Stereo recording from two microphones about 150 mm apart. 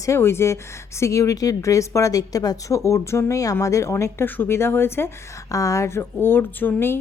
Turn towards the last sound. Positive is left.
turn(degrees=15)  # may be behind; listen again after turning